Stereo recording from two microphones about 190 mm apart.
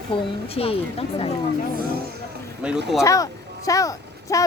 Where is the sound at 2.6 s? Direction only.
5° right (ahead or behind).